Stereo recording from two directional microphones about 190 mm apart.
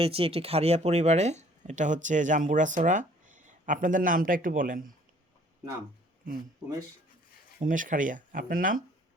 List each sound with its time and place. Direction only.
0.0 s speech: 30° right (ahead or behind); by 4.8 s 45° right (ahead or behind)
7.6 s speech: 45° right (ahead or behind)